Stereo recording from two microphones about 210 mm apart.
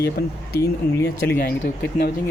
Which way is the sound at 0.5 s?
15° left (ahead or behind).